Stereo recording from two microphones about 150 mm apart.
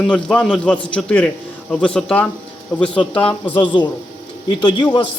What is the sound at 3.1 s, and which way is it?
Speech, 35° left (ahead or behind).